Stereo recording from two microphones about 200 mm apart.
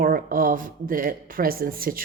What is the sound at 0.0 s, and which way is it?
A woman's voice, 45° right (ahead or behind).